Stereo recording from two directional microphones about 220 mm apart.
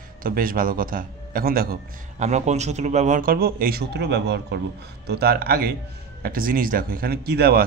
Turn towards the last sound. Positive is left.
turn(degrees=-45)  # may be behind; listen again after turning